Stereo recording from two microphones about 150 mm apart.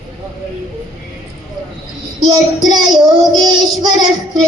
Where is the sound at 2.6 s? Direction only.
30° right (ahead or behind).